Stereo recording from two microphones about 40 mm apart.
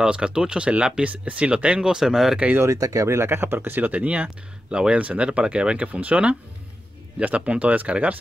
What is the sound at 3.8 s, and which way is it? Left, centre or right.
Speech, right.